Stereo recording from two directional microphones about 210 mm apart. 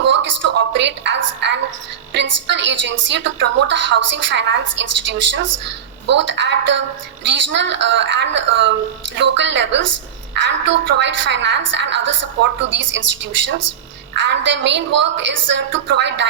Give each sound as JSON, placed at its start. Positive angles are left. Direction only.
{"t": 0.2, "sound": "a woman's voice", "side_deg": -60}
{"t": 10.9, "sound": "a woman's voice", "side_deg": -60}